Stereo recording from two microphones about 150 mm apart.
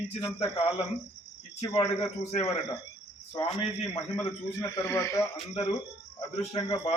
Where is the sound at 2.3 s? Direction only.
45° left (ahead or behind).